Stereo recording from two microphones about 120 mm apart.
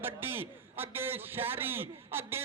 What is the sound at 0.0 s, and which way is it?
A man's voice, 15° right (ahead or behind).